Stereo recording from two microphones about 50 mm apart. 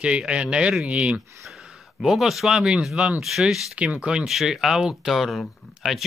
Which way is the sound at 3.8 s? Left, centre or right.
Right.